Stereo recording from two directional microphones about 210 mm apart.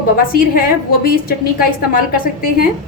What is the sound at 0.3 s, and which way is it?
A woman's voice, 45° left (ahead or behind).